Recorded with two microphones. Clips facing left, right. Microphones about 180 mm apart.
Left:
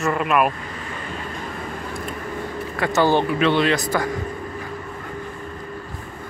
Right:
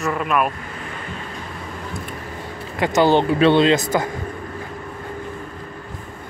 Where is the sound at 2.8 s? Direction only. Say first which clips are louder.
Right 3 dB; 20° right (ahead or behind).